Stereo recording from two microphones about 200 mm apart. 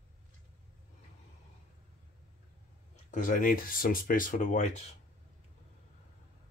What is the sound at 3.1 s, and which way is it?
Speech, 40° left (ahead or behind).